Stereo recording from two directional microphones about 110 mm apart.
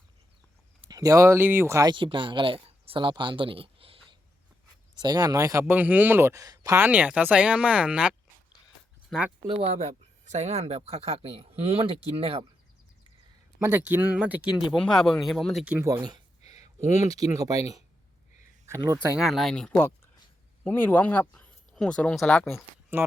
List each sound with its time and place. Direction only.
0.9 s a man's voice: 30° right (ahead or behind)
1.9 s speech: 50° right (ahead or behind)
4.9 s speech: 40° right (ahead or behind)
5.6 s a man's voice: 15° right (ahead or behind); by 6.7 s 35° right (ahead or behind)
6.7 s speech: 15° right (ahead or behind)
9.5 s speech: 70° right (ahead or behind)
13.6 s speech: 20° right (ahead or behind)
14.7 s speech: 5° left (ahead or behind)
15.8 s speech: 35° right (ahead or behind)
18.6 s speech: 25° right (ahead or behind)
19.1 s speech: 5° right (ahead or behind)
20.7 s speech: 20° left (ahead or behind); by 22.6 s centre (ahead or behind)
22.9 s speech: 20° right (ahead or behind)